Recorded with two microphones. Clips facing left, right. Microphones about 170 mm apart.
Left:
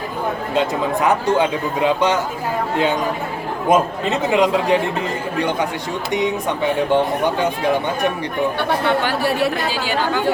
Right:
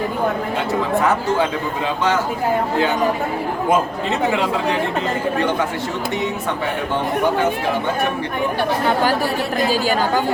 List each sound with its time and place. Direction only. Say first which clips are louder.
1.0 s speech: left 1 dB; 20° left (ahead or behind)
3.7 s speech: left 3 dB; 20° left (ahead or behind)
9.6 s speech: right 4 dB; 45° right (ahead or behind)